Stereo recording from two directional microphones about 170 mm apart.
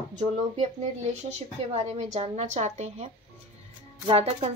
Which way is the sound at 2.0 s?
40° right (ahead or behind).